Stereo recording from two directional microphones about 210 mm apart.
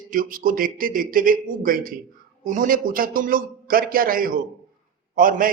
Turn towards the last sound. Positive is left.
turn(degrees=-40)  # may be behind; listen again after turning